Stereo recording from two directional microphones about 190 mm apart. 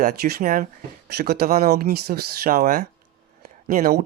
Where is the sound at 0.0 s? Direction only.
55° right (ahead or behind).